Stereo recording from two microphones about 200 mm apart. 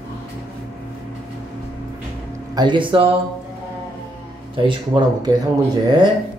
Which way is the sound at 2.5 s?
25° right (ahead or behind).